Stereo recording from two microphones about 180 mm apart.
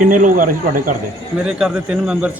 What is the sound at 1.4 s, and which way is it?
Speech, 5° right (ahead or behind).